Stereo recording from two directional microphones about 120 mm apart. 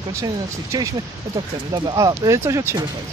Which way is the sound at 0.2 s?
30° right (ahead or behind).